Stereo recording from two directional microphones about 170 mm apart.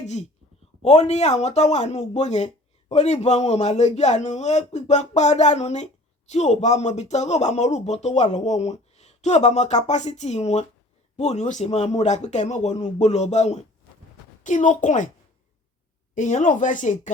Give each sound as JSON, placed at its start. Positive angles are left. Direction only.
{"t": 0.8, "sound": "a man's voice", "side_deg": 40}
{"t": 16.1, "sound": "speech", "side_deg": 45}